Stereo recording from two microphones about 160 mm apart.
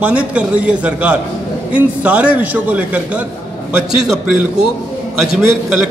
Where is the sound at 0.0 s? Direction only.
10° right (ahead or behind).